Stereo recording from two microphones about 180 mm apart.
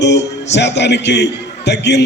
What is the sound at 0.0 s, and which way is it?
A man's voice, 75° left (ahead or behind).